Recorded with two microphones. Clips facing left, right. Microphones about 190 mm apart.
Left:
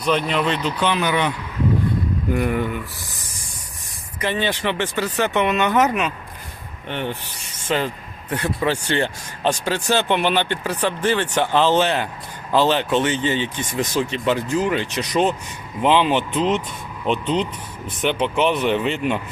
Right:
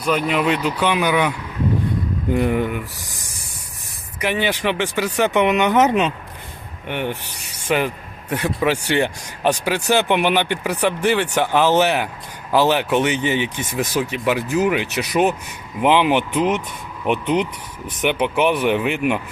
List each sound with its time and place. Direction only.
0.0 s speech: 5° right (ahead or behind)
2.3 s speech: 20° right (ahead or behind)
4.2 s speech: 10° right (ahead or behind)
6.8 s speech: 15° right (ahead or behind)